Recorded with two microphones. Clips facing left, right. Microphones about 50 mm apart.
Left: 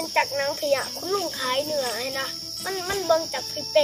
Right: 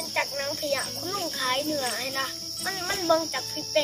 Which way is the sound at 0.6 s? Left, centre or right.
Centre.